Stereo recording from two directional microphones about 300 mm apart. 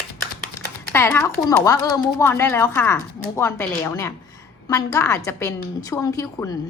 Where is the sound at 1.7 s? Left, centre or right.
Centre.